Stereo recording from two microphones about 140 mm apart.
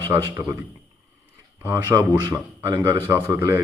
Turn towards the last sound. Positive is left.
turn(degrees=-15)  # may be behind; listen again after turning